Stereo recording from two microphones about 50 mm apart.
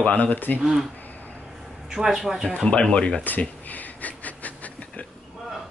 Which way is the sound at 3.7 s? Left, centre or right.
Left.